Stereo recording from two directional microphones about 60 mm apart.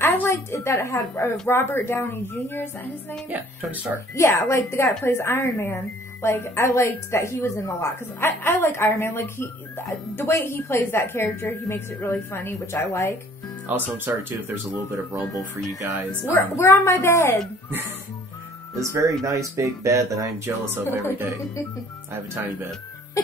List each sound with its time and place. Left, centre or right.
0.0 s a sound: left
0.5 s a woman's voice: left
3.3 s speech: right
4.1 s a woman's voice: left
13.7 s speech: right
16.3 s a woman's voice: left
18.8 s speech: right
20.4 s speech: right
23.2 s music: left